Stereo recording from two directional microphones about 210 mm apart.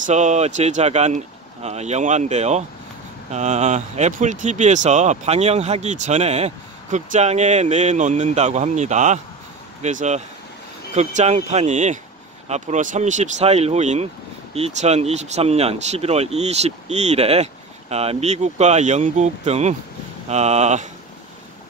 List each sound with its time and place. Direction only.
0.0 s speech: 35° right (ahead or behind)